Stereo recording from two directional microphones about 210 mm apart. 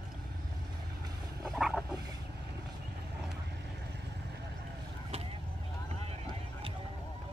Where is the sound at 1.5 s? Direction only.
Centre (ahead or behind).